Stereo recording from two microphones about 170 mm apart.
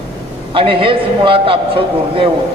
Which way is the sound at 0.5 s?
30° right (ahead or behind).